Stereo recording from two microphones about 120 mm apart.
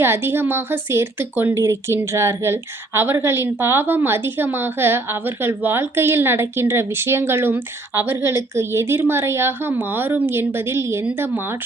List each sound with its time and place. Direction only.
0.0 s a woman's voice: 20° right (ahead or behind)